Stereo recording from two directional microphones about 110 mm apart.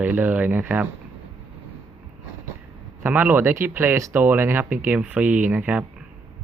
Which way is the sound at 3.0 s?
15° right (ahead or behind).